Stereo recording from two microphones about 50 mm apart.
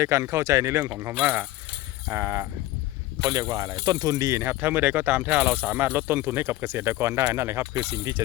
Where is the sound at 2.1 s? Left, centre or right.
Right.